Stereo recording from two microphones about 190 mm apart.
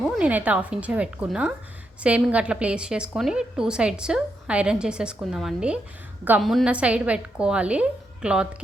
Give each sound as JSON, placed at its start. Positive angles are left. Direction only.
{"t": 0.0, "sound": "a woman's voice", "side_deg": -5}